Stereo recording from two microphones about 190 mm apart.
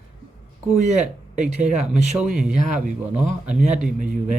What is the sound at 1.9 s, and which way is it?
Speech, 5° right (ahead or behind).